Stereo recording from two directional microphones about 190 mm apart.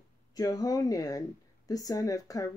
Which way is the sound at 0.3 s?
20° left (ahead or behind).